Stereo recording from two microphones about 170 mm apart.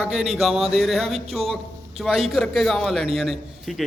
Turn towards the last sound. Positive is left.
turn(degrees=0)  # may be behind; listen again after turning